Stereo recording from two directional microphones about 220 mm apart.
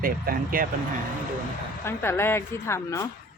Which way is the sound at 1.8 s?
10° left (ahead or behind).